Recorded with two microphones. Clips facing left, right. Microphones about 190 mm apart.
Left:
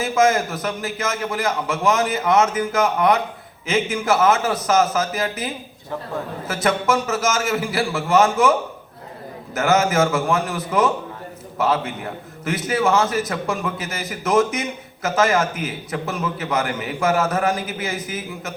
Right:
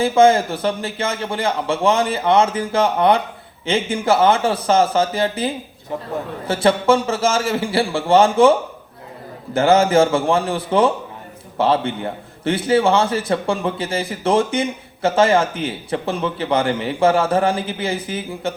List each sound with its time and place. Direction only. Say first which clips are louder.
0.0 s a man's voice: right 5 dB; 30° right (ahead or behind)
6.5 s a man's voice: right 5 dB; 30° right (ahead or behind)